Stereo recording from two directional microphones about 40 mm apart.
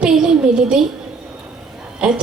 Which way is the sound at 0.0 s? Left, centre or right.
Centre.